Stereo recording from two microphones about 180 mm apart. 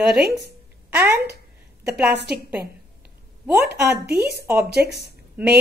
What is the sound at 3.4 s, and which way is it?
A woman's voice, 5° right (ahead or behind).